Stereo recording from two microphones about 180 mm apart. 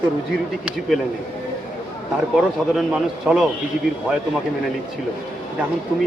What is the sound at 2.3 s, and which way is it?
Speech, centre (ahead or behind).